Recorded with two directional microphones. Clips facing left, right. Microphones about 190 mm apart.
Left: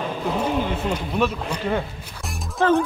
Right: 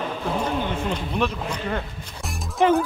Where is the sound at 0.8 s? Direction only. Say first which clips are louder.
Left 2 dB; 5° left (ahead or behind).